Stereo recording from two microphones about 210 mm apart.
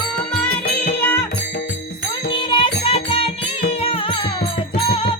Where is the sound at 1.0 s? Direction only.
10° left (ahead or behind).